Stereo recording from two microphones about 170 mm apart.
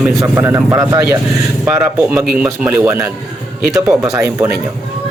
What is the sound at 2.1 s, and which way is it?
Speech, centre (ahead or behind).